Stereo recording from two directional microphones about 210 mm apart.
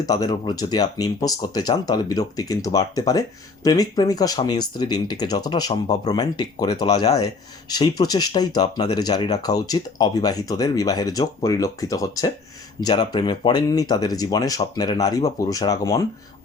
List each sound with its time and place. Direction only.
0.0 s speech: 15° left (ahead or behind)